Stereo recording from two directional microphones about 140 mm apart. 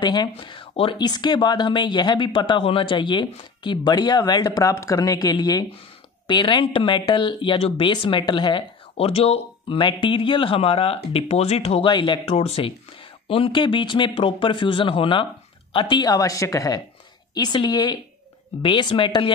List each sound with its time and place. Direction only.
0.0 s speech: 30° left (ahead or behind)